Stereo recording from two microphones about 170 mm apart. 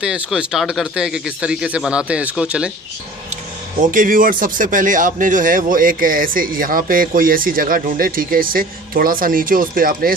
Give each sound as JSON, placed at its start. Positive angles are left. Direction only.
{"t": 0.0, "sound": "speech", "side_deg": -5}
{"t": 3.8, "sound": "speech", "side_deg": -50}